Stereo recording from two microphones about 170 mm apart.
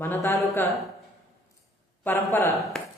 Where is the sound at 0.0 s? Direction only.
15° left (ahead or behind).